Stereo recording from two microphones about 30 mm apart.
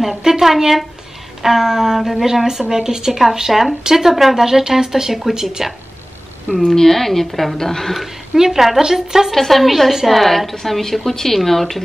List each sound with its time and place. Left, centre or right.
0.2 s a woman's voice: centre
2.7 s speech: centre
3.1 s speech: centre; by 5.6 s right
6.6 s a woman's voice: centre
8.4 s speech: centre
9.3 s a woman's voice: centre